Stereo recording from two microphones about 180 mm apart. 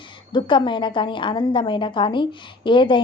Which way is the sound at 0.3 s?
25° left (ahead or behind).